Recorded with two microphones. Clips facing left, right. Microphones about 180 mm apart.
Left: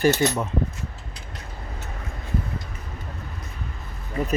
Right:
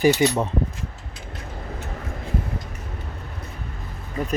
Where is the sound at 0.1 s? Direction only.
45° left (ahead or behind).